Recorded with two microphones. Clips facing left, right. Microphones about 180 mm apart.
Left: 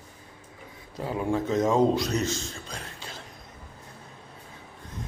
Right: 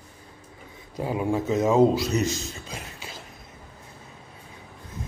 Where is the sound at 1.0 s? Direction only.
10° right (ahead or behind).